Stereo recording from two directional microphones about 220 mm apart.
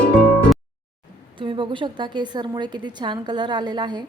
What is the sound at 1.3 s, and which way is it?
A woman's voice, 20° right (ahead or behind).